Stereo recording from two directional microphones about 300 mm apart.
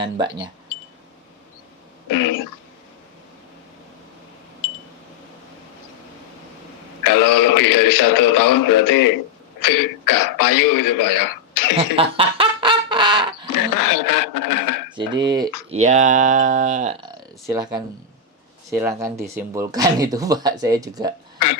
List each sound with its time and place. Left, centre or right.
0.0 s speech: centre
2.0 s a man's voice: left
7.0 s a man's voice: left
11.9 s fowl: centre
13.5 s radio: left
14.8 s speech: centre